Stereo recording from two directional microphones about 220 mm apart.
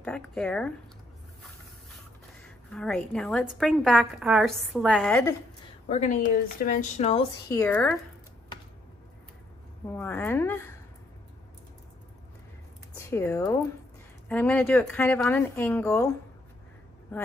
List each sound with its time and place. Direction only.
0.0 s a woman's voice: 5° left (ahead or behind)
2.7 s a woman's voice: 5° left (ahead or behind)
5.9 s speech: 35° left (ahead or behind)
7.4 s speech: 15° left (ahead or behind)
9.9 s speech: 10° left (ahead or behind)
12.9 s speech: 15° left (ahead or behind)